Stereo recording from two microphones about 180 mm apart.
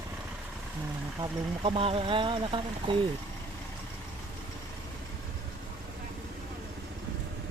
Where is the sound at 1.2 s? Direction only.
30° right (ahead or behind).